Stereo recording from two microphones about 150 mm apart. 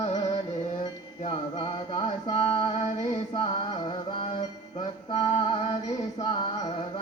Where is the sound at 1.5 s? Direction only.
35° left (ahead or behind).